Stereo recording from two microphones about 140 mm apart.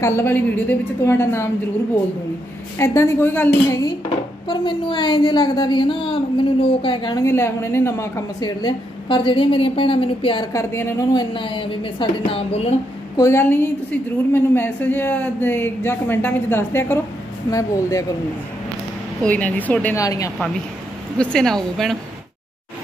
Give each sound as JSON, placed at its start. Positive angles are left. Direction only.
{"t": 0.0, "sound": "speech", "side_deg": 15}
{"t": 2.8, "sound": "a woman's voice", "side_deg": 20}
{"t": 4.5, "sound": "a woman's voice", "side_deg": 35}
{"t": 7.2, "sound": "a woman's voice", "side_deg": 20}
{"t": 8.4, "sound": "a woman's voice", "side_deg": 30}
{"t": 10.5, "sound": "a woman's voice", "side_deg": 20}
{"t": 13.1, "sound": "a woman's voice", "side_deg": 20}
{"t": 19.2, "sound": "speech", "side_deg": 10}
{"t": 20.0, "sound": "a woman's voice", "side_deg": 25}
{"t": 21.2, "sound": "speech", "side_deg": 5}